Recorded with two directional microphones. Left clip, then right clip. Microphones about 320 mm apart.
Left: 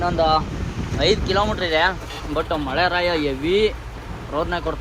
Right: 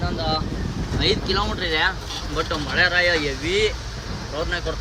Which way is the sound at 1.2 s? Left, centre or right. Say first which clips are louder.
Left 3 dB; centre.